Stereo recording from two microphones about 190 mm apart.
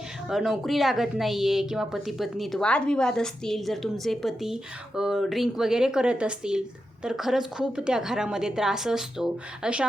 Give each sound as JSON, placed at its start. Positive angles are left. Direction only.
{"t": 0.3, "sound": "a woman's voice", "side_deg": 0}